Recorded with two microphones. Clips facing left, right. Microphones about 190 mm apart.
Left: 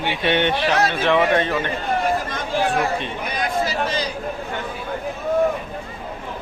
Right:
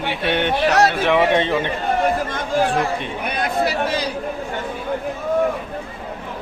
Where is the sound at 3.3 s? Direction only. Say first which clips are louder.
Right 3 dB; 60° right (ahead or behind).